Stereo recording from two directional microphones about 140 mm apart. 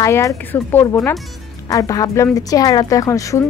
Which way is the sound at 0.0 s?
20° left (ahead or behind).